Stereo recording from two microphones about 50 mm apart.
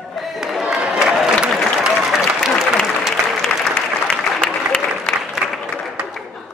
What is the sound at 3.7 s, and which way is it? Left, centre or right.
Applause, centre.